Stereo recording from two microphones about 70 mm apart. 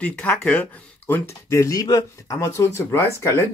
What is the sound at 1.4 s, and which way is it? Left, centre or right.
Speech, left.